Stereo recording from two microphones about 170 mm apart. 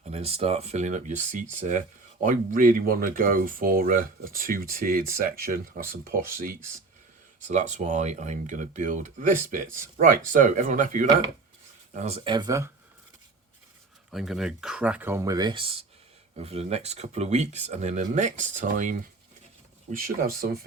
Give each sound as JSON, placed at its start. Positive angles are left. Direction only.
{"t": 0.0, "sound": "speech", "side_deg": -35}
{"t": 11.9, "sound": "speech", "side_deg": -35}
{"t": 14.1, "sound": "speech", "side_deg": 0}